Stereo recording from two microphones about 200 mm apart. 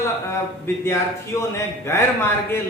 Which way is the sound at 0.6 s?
10° left (ahead or behind).